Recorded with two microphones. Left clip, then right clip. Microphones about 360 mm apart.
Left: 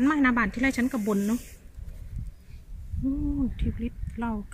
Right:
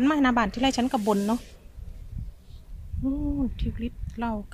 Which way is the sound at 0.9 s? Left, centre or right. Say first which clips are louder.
Right 4 dB; right.